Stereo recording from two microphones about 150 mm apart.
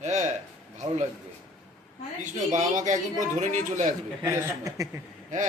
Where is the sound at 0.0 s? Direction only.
50° right (ahead or behind).